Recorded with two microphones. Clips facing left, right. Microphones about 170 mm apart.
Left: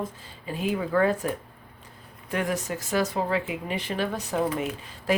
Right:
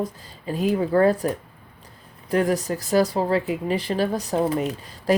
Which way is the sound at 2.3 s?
35° right (ahead or behind).